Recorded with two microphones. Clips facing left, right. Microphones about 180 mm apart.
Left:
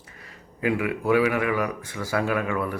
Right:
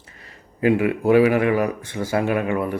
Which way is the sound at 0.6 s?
30° right (ahead or behind).